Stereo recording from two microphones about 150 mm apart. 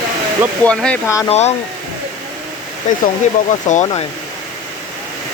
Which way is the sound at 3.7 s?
55° left (ahead or behind).